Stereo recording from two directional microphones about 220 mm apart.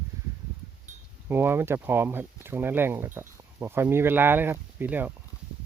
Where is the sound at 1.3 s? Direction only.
10° right (ahead or behind).